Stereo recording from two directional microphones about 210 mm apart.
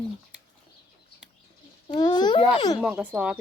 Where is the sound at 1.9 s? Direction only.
20° left (ahead or behind).